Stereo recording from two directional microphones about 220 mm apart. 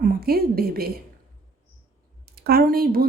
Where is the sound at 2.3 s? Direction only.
45° right (ahead or behind).